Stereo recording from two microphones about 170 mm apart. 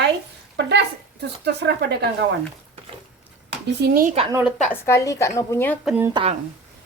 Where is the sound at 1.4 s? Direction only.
80° right.